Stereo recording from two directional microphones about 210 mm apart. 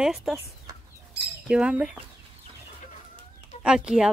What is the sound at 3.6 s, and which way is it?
Speech, 5° right (ahead or behind).